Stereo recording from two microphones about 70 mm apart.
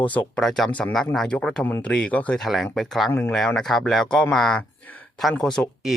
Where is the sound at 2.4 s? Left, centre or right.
Centre.